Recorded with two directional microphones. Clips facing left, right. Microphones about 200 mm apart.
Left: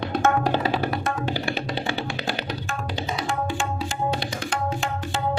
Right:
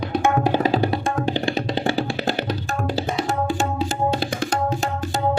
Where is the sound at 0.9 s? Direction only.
25° right (ahead or behind).